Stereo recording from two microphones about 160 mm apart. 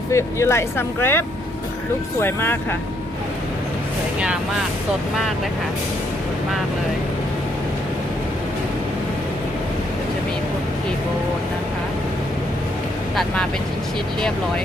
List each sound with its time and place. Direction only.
0.1 s speech: 15° left (ahead or behind)
2.2 s speech: 15° left (ahead or behind)
13.1 s speech: 5° left (ahead or behind)